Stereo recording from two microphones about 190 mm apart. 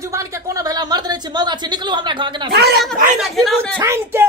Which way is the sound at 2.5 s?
55° right (ahead or behind).